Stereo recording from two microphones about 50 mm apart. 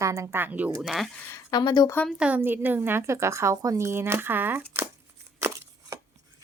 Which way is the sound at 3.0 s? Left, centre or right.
Right.